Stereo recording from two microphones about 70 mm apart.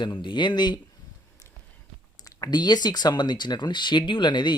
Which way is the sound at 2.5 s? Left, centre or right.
Left.